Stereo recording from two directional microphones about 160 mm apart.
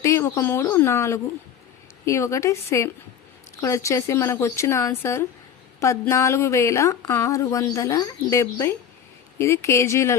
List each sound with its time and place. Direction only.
0.0 s a woman's voice: 15° left (ahead or behind)